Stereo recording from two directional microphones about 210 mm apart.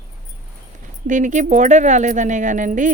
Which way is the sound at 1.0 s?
35° right (ahead or behind).